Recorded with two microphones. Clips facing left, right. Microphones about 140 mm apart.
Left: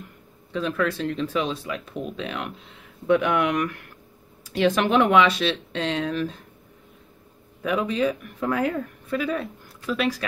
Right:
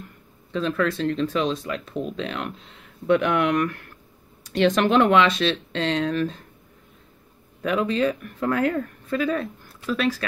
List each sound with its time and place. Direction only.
0.5 s speech: 10° left (ahead or behind)
7.6 s speech: 10° left (ahead or behind)